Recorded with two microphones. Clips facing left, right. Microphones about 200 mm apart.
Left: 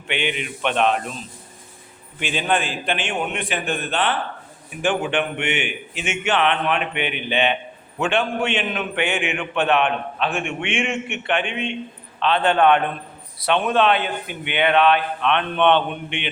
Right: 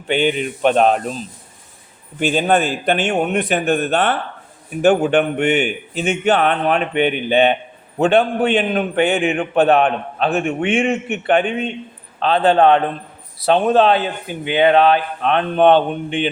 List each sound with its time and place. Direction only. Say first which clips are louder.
0.1 s a man's voice: right 8 dB; 40° right (ahead or behind)